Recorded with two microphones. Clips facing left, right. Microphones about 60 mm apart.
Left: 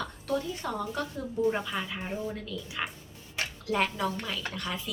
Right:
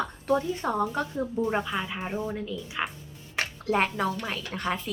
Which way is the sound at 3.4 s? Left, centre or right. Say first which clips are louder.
Right 3 dB; right.